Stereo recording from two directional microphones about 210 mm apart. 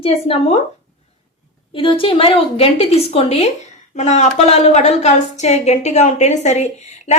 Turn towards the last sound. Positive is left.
turn(degrees=30)  # may be behind; listen again after turning